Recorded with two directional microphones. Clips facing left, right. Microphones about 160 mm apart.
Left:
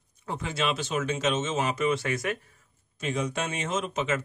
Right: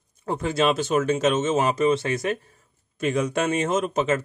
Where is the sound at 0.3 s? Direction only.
40° right (ahead or behind).